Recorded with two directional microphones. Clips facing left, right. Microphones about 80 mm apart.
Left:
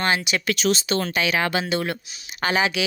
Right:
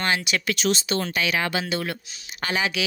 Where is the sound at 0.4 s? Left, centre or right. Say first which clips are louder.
Left 2 dB; left.